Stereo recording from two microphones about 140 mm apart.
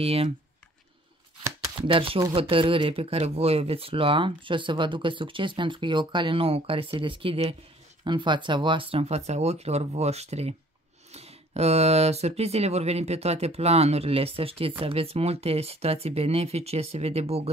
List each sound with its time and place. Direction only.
0.0 s speech: 45° right (ahead or behind)
1.9 s speech: 40° right (ahead or behind)
8.0 s speech: 35° right (ahead or behind)